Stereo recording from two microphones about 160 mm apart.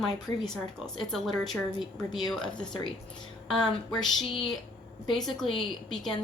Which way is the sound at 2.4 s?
5° left (ahead or behind).